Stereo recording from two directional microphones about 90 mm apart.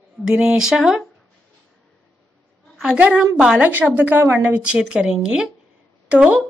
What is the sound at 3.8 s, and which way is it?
A woman's voice, 20° right (ahead or behind).